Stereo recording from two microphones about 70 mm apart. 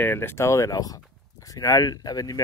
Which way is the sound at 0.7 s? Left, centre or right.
Left.